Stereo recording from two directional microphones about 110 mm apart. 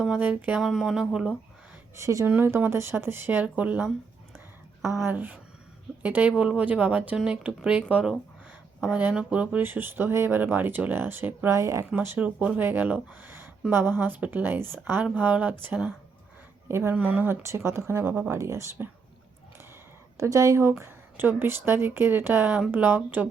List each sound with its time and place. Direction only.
0.0 s speech: 10° right (ahead or behind)
2.0 s speech: 30° right (ahead or behind)
5.0 s speech: 15° right (ahead or behind)
12.0 s speech: 15° right (ahead or behind)
20.1 s speech: 30° right (ahead or behind)